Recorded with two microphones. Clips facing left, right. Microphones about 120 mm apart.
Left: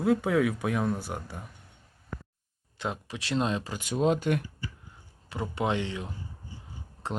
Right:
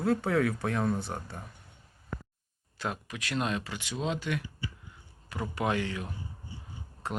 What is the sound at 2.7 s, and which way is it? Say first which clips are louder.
Speech: left 2 dB; 20° left (ahead or behind).